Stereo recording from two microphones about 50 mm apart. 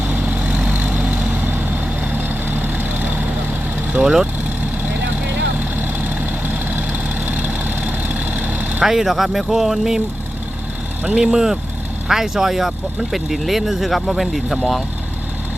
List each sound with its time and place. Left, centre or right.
0.0 s vehicle: right
4.0 s speech: centre
5.1 s vehicle: right
8.8 s speech: centre
11.1 s speech: centre